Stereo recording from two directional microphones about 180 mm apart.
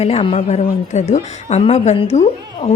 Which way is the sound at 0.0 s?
35° left (ahead or behind).